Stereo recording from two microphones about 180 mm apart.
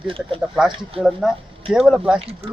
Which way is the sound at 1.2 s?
Centre (ahead or behind).